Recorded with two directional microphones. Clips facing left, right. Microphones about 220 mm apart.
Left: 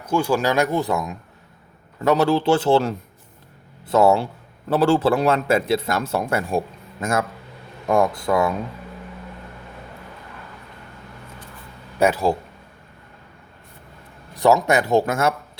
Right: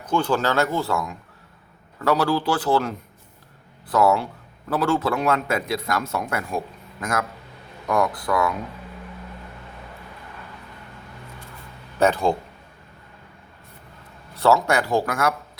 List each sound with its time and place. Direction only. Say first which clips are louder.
0.0 s a man's voice: left 2 dB; 10° left (ahead or behind); by 8.5 s 25° left (ahead or behind)
11.9 s speech: left 1 dB; 10° left (ahead or behind)
14.3 s a man's voice: left 2 dB; 15° left (ahead or behind)